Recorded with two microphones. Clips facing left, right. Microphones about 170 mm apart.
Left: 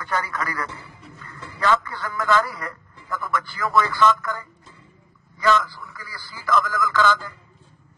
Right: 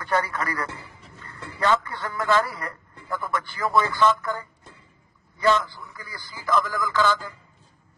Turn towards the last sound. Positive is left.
turn(degrees=-15)  # may be behind; listen again after turning